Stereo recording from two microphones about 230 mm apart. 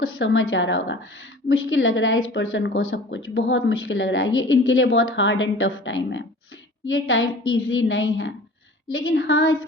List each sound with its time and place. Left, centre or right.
0.0 s a woman's voice: left